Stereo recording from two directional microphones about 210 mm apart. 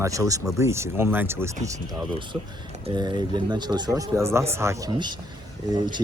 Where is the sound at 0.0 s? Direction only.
15° right (ahead or behind).